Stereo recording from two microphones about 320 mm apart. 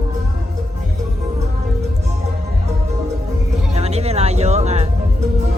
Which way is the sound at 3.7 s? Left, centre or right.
Centre.